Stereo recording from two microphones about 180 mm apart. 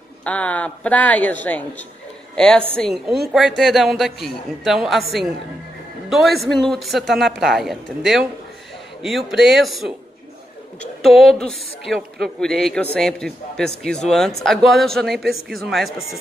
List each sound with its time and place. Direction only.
0.2 s a man's voice: 5° left (ahead or behind)
6.0 s speech: centre (ahead or behind)
11.0 s speech: centre (ahead or behind)